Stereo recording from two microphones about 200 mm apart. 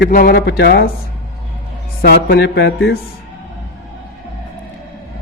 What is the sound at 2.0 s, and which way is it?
A man's voice, 50° left (ahead or behind).